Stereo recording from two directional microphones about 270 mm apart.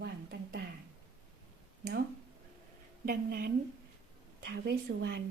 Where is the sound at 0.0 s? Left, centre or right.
Right.